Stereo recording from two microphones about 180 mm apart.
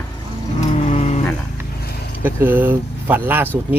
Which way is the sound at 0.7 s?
35° left (ahead or behind).